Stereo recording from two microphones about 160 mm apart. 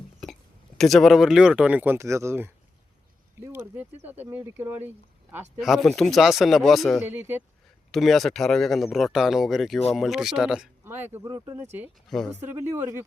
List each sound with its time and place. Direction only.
0.8 s speech: centre (ahead or behind); by 4.8 s 15° right (ahead or behind)
5.3 s speech: centre (ahead or behind)
12.0 s speech: centre (ahead or behind)
12.4 s speech: 15° right (ahead or behind)